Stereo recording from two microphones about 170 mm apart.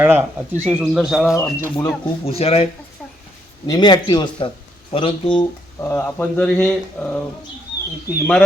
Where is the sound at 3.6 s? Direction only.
25° left (ahead or behind).